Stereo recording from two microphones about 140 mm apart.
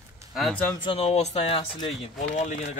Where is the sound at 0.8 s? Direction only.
40° left (ahead or behind).